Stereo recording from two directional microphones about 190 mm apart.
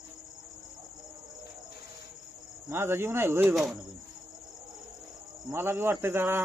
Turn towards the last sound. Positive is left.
turn(degrees=-10)  # may be behind; listen again after turning